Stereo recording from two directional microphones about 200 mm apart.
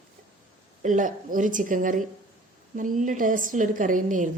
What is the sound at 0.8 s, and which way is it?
A woman's voice, 40° right (ahead or behind).